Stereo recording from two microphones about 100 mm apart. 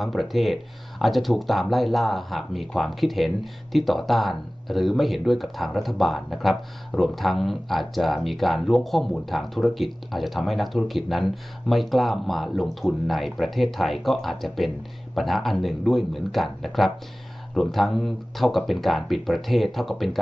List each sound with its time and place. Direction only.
0.0 s speech: centre (ahead or behind)